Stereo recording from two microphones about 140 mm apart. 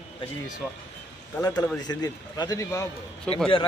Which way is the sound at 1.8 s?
30° left (ahead or behind).